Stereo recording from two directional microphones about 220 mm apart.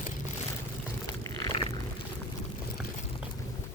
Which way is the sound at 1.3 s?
15° left (ahead or behind).